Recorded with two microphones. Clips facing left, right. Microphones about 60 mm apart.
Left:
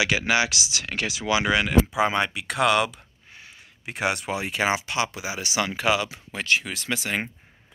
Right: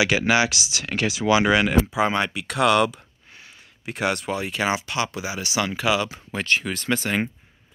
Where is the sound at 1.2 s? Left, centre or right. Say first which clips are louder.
Right 4 dB; right.